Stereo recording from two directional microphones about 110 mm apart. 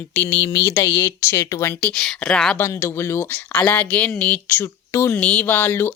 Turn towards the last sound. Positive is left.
turn(degrees=20)  # may be behind; listen again after turning